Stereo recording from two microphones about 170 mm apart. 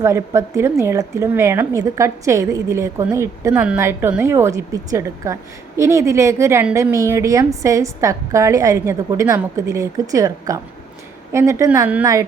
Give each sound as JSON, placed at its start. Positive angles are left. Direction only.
{"t": 0.0, "sound": "a woman's voice", "side_deg": -15}